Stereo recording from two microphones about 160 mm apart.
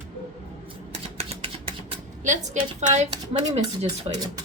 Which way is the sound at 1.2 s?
35° right (ahead or behind).